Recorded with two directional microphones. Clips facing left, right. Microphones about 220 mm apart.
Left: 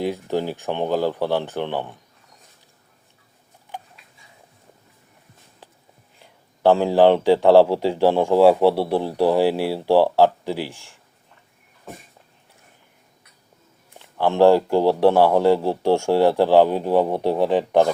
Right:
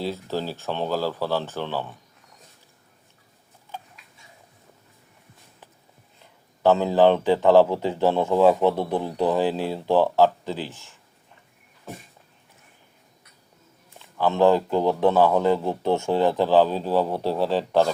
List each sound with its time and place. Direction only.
0.0 s speech: 15° left (ahead or behind)
6.2 s speech: 15° left (ahead or behind)
14.0 s speech: 15° left (ahead or behind)